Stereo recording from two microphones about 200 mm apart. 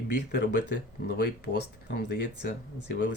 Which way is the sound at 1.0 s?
55° left (ahead or behind).